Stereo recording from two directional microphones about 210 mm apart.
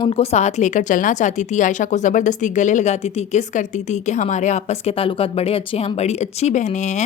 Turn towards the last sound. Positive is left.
turn(degrees=35)  # may be behind; listen again after turning